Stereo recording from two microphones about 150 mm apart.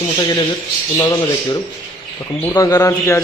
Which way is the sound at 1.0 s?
25° left (ahead or behind).